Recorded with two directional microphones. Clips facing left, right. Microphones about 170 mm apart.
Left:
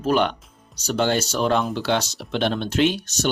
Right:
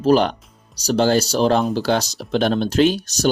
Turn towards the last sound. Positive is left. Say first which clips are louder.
# right 4 dB
turn(degrees=-35)  # may be behind; listen again after turning